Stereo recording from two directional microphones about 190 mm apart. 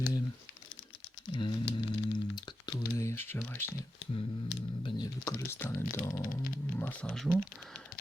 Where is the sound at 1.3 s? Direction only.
25° left (ahead or behind).